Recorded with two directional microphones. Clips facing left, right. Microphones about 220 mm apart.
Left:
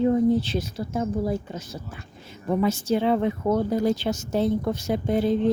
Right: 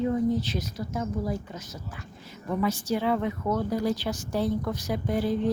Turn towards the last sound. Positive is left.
turn(degrees=25)  # may be behind; listen again after turning